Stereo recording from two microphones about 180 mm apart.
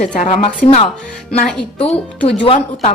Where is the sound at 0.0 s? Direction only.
45° left (ahead or behind).